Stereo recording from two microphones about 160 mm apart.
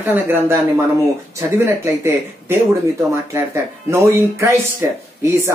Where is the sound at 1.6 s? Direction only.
15° right (ahead or behind).